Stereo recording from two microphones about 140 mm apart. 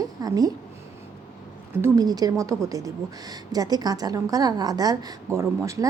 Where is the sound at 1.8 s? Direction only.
25° right (ahead or behind).